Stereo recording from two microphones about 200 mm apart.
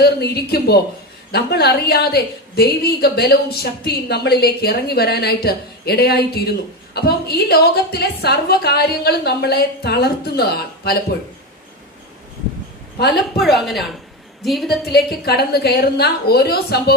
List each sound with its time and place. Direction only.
0.0 s a woman's voice: 50° left (ahead or behind)
13.3 s a woman's voice: centre (ahead or behind)
14.8 s a woman's voice: 55° left (ahead or behind)